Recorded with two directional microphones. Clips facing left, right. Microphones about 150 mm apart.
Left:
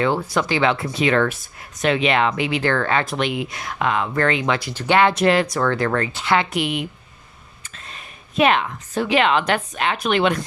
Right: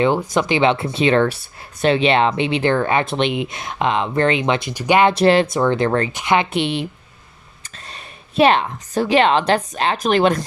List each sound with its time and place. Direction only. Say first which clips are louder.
0.0 s speech: right 3 dB; 20° right (ahead or behind)
5.1 s speech: right 3 dB; 30° right (ahead or behind)
7.9 s a woman's voice: right 3 dB; 35° right (ahead or behind)